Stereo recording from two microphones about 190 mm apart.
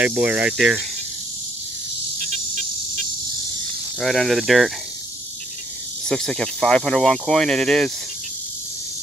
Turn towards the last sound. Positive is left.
turn(degrees=0)  # may be behind; listen again after turning